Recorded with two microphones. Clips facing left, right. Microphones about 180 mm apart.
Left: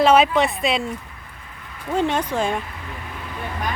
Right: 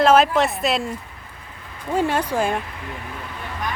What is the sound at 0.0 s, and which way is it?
Speech, centre (ahead or behind).